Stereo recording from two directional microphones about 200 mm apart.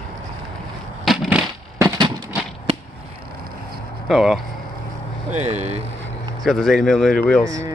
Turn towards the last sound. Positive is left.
turn(degrees=5)  # may be behind; listen again after turning